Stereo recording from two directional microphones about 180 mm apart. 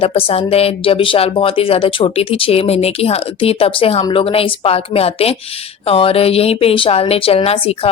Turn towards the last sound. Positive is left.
turn(degrees=35)  # may be behind; listen again after turning